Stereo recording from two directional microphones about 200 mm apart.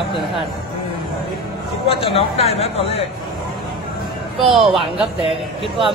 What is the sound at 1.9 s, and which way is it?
Speech, 30° left (ahead or behind).